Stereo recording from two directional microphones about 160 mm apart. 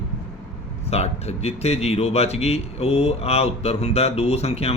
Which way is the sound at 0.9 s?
40° left (ahead or behind).